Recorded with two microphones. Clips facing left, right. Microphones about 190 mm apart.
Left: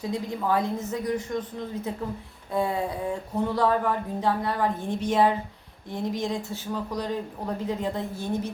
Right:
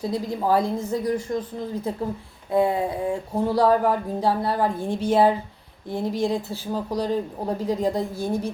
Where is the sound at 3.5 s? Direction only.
35° right (ahead or behind).